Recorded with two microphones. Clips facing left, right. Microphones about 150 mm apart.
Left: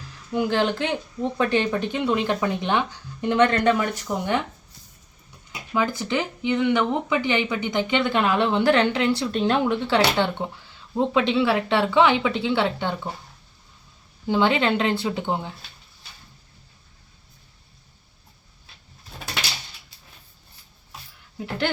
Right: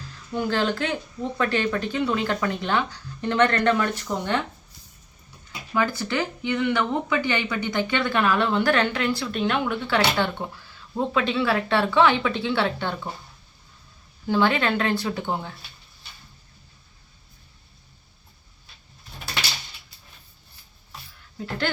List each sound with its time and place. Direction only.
0.3 s speech: 15° left (ahead or behind)
5.5 s speech: 15° left (ahead or behind)
14.3 s speech: 20° left (ahead or behind)
21.3 s speech: 15° left (ahead or behind)